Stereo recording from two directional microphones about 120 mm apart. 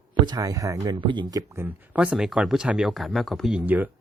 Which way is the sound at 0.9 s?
40° right (ahead or behind).